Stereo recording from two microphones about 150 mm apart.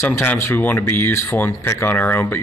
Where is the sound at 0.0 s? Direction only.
15° left (ahead or behind).